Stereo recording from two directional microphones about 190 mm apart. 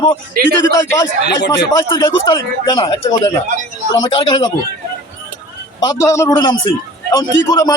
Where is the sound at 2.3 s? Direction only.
25° left (ahead or behind).